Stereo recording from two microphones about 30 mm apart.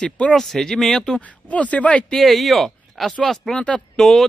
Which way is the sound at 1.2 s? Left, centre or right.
Left.